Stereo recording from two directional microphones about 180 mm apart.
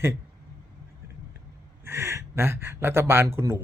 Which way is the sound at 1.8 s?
15° right (ahead or behind).